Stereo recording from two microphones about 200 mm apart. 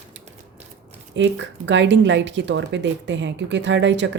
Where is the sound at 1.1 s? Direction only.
65° right (ahead or behind).